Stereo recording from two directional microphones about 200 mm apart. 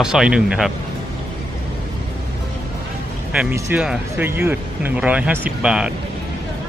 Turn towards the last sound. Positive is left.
turn(degrees=-5)  # may be behind; listen again after turning